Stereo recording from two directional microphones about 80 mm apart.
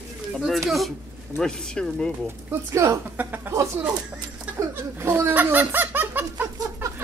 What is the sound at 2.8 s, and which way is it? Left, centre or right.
Speech, right.